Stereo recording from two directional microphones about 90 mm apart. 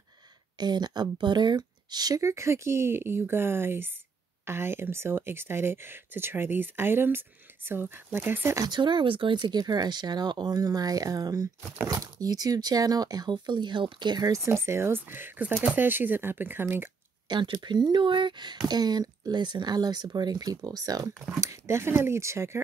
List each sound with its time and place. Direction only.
0.6 s speech: 50° right (ahead or behind); by 8.6 s 25° right (ahead or behind)
8.6 s speech: 60° right (ahead or behind); by 16.6 s 25° right (ahead or behind)
17.3 s speech: 55° right (ahead or behind)
21.4 s speech: 30° right (ahead or behind)